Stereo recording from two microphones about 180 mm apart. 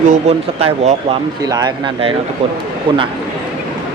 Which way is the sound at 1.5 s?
25° right (ahead or behind).